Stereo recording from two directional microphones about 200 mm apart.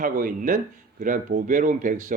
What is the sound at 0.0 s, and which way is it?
A man's voice, 45° right (ahead or behind).